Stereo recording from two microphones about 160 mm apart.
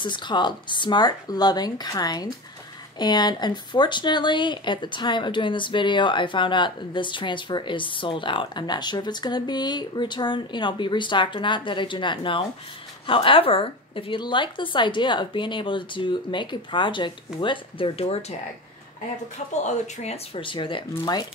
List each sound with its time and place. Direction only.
0.0 s a woman's voice: 30° left (ahead or behind)
19.5 s a woman's voice: 45° left (ahead or behind); by 21.3 s 25° left (ahead or behind)